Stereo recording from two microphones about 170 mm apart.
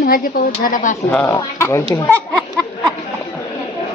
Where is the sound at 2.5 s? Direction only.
5° left (ahead or behind).